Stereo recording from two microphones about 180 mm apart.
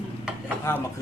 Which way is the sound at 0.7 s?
15° left (ahead or behind).